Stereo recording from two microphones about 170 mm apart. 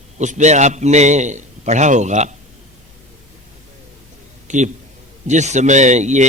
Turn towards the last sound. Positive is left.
turn(degrees=-45)  # may be behind; listen again after turning